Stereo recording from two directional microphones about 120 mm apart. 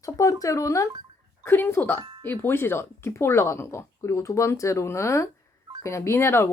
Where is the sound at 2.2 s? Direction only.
15° left (ahead or behind).